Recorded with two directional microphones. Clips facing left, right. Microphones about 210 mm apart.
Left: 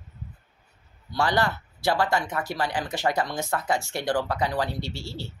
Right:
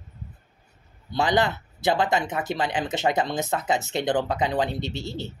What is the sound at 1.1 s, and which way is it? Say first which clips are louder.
Speech: right 2 dB; 20° right (ahead or behind).